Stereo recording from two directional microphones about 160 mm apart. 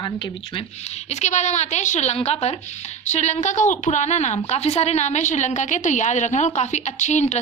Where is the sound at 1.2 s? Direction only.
45° left (ahead or behind).